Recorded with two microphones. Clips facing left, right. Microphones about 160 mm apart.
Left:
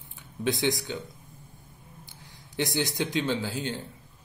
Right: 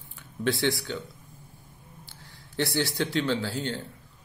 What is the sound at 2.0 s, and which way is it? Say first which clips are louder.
Speech: even; 15° left (ahead or behind).